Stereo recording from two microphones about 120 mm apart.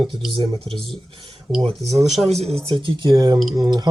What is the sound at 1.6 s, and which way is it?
Speech, 50° right (ahead or behind).